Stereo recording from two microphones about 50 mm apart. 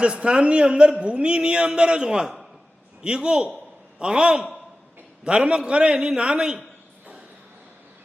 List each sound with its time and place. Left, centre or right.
0.0 s a man's voice: right